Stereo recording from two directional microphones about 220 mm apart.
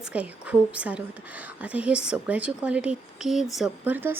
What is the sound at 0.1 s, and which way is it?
A woman's voice, 5° right (ahead or behind).